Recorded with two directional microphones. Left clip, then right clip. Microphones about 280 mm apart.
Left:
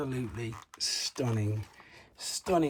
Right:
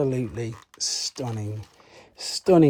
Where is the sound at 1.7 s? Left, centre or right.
Centre.